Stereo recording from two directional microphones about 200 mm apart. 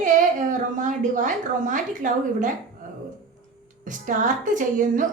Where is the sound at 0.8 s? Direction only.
40° right (ahead or behind).